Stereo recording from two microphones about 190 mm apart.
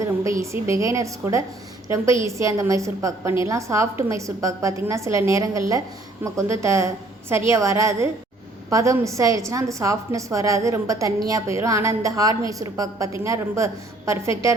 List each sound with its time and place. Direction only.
0.5 s a woman's voice: 15° right (ahead or behind)